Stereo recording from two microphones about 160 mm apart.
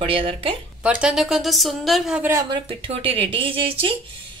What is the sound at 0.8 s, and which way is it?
Speech, 5° right (ahead or behind).